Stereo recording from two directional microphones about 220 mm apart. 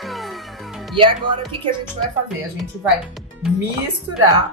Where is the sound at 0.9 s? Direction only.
25° right (ahead or behind).